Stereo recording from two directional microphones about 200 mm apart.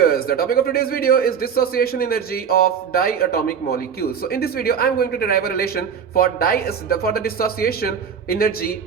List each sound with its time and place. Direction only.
0.0 s a man's voice: 50° left (ahead or behind)